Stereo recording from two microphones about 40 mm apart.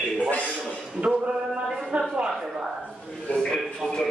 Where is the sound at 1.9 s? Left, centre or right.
Right.